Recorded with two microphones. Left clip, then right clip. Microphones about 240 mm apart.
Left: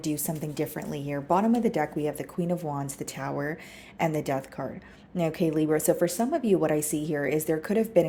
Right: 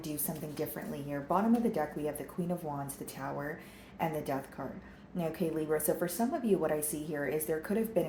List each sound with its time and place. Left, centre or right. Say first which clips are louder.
0.3 s a woman's voice: left 6 dB; left